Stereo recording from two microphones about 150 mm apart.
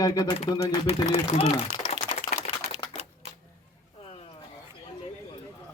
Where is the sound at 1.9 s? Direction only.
40° left (ahead or behind).